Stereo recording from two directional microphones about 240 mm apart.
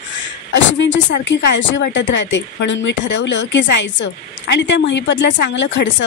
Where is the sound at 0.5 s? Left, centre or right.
Left.